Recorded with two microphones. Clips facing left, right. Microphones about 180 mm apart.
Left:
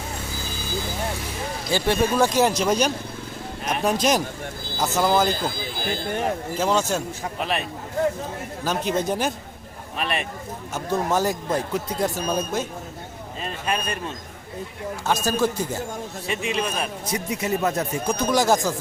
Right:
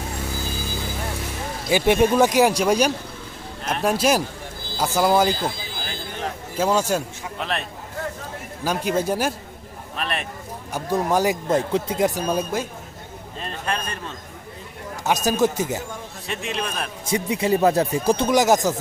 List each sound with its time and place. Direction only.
1.7 s speech: 15° right (ahead or behind)
6.6 s speech: 10° right (ahead or behind)
7.3 s a man's voice: 5° left (ahead or behind)
8.6 s a man's voice: 10° right (ahead or behind)
10.8 s speech: 10° right (ahead or behind)
11.4 s a man's voice: 25° right (ahead or behind)
13.4 s speech: 5° left (ahead or behind)
15.0 s speech: 15° right (ahead or behind)
16.2 s a man's voice: centre (ahead or behind)
17.1 s speech: 30° right (ahead or behind)
18.3 s a man's voice: 20° right (ahead or behind)